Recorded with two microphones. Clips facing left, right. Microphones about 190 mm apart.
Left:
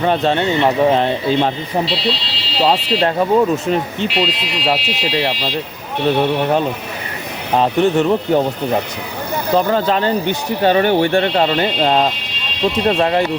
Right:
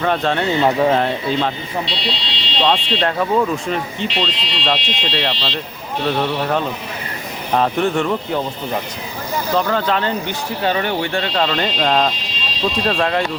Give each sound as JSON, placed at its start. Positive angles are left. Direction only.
{"t": 0.0, "sound": "speech", "side_deg": 25}
{"t": 1.8, "sound": "speech", "side_deg": 0}
{"t": 3.2, "sound": "speech", "side_deg": 20}
{"t": 4.1, "sound": "speech", "side_deg": 10}
{"t": 7.8, "sound": "speech", "side_deg": 0}
{"t": 8.3, "sound": "speech", "side_deg": 40}